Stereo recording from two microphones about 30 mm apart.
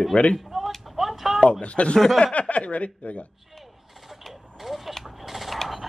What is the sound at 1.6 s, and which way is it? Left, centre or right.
A woman's voice, left.